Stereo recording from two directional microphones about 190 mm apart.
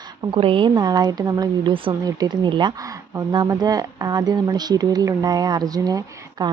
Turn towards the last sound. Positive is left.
turn(degrees=-20)  # may be behind; listen again after turning